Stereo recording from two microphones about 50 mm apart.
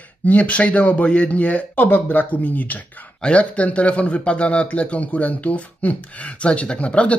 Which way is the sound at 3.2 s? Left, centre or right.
Left.